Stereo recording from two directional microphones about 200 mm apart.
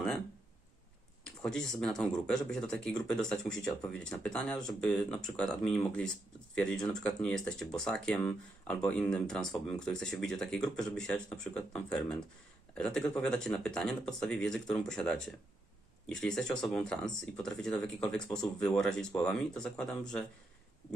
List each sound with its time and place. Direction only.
1.5 s speech: centre (ahead or behind)